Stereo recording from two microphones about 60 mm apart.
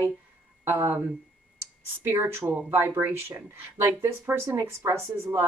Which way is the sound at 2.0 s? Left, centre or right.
Right.